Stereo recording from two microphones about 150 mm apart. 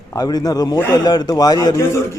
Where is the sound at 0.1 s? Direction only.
25° left (ahead or behind).